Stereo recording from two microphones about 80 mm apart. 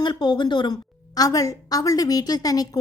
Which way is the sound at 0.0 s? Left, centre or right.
Left.